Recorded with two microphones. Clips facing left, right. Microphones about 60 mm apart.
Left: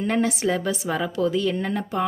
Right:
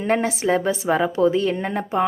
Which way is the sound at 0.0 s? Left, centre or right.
Right.